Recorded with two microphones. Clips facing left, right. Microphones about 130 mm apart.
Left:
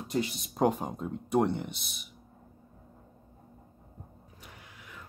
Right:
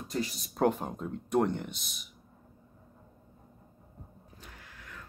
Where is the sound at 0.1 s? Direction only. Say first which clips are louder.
Left 3 dB; 25° left (ahead or behind).